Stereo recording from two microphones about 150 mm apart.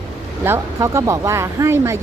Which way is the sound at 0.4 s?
15° right (ahead or behind).